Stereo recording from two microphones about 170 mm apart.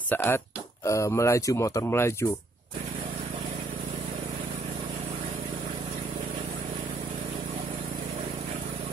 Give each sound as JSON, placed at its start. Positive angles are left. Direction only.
{"t": 0.1, "sound": "speech", "side_deg": 15}